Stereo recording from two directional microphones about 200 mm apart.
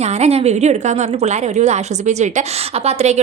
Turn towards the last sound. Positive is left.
turn(degrees=-35)  # may be behind; listen again after turning